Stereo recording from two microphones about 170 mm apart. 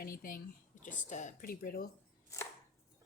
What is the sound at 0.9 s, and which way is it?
Speech, 45° left (ahead or behind).